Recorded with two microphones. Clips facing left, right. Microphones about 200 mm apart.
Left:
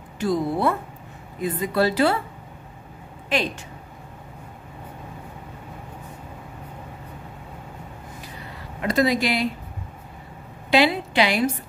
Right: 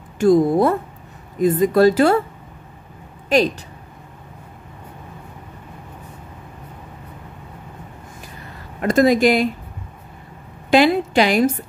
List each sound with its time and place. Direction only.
0.2 s a woman's voice: 45° right (ahead or behind)
8.8 s a woman's voice: 50° right (ahead or behind)
10.7 s a woman's voice: 50° right (ahead or behind)